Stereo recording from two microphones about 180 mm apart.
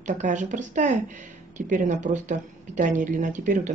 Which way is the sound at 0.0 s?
45° right (ahead or behind).